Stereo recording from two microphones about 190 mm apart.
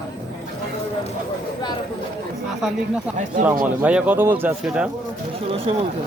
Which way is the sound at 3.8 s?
5° right (ahead or behind).